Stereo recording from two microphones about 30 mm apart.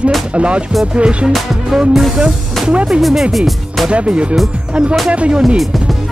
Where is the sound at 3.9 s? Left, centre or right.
Right.